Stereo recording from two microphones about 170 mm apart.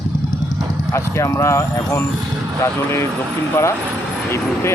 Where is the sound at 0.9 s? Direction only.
15° left (ahead or behind).